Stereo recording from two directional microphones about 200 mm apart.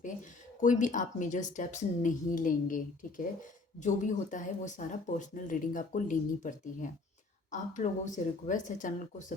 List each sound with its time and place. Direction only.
0.6 s speech: 40° left (ahead or behind)